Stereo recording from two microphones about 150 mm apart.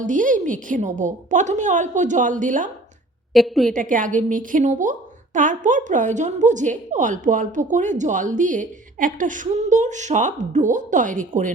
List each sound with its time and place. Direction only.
0.0 s a woman's voice: 60° right (ahead or behind)
3.3 s a woman's voice: centre (ahead or behind)
3.7 s a woman's voice: 60° right (ahead or behind)